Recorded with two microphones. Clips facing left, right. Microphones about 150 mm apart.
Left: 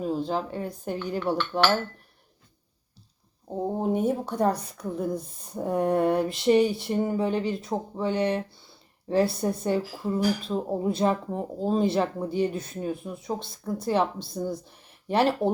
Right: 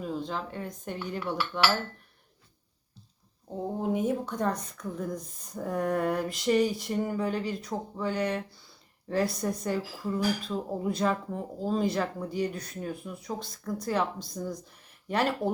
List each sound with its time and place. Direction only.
0.0 s speech: 35° left (ahead or behind)
3.5 s speech: 35° left (ahead or behind)